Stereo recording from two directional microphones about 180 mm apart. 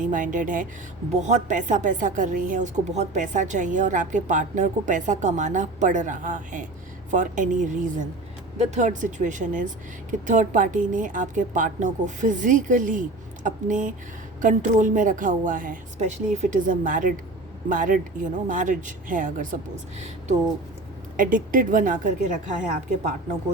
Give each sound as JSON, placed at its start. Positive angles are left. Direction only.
{"t": 0.1, "sound": "speech", "side_deg": -45}
{"t": 21.2, "sound": "speech", "side_deg": -50}